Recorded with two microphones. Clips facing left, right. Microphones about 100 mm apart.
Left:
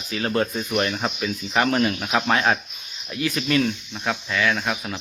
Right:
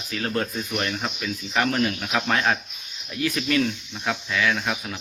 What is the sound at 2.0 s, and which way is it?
Speech, 25° left (ahead or behind).